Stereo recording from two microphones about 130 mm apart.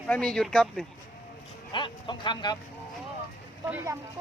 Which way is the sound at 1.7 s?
40° left (ahead or behind).